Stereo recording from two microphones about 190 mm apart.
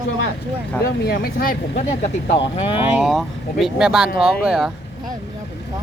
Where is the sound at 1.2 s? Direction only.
50° left (ahead or behind).